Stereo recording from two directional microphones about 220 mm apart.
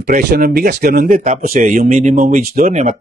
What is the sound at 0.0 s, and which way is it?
Speech, 40° right (ahead or behind).